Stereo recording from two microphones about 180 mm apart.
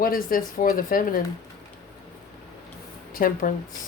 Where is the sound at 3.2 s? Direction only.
55° left (ahead or behind).